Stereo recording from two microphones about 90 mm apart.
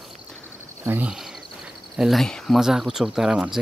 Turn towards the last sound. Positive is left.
turn(degrees=-5)  # may be behind; listen again after turning